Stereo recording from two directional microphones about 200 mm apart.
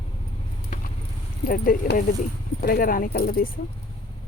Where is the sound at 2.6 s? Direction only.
45° left (ahead or behind).